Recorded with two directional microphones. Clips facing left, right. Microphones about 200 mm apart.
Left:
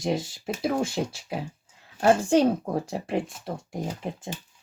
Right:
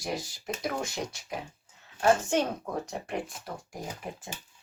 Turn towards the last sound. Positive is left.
turn(degrees=25)  # may be behind; listen again after turning